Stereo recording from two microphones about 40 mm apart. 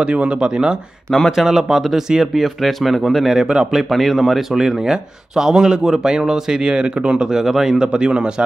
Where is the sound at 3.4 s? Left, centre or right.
Right.